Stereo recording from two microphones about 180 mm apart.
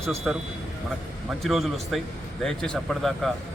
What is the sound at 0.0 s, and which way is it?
Speech, centre (ahead or behind).